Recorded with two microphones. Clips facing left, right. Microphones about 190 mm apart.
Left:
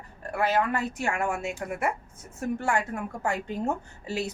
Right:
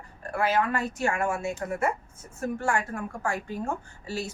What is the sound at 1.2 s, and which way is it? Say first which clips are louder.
A woman's voice: right 1 dB; 15° left (ahead or behind).